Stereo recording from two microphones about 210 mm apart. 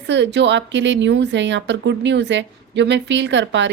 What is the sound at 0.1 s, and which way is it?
A woman's voice, 55° right (ahead or behind).